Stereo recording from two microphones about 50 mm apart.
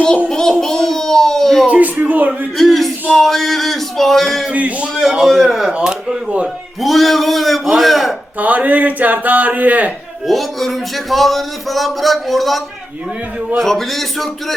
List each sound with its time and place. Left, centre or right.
0.3 s child singing: centre
0.6 s a sound: centre
1.7 s speech: right
2.6 s speech: centre
4.5 s a man's voice: right
4.9 s speech: centre
5.7 s speech: centre
6.8 s speech: centre
8.4 s speech: right
10.2 s speech: centre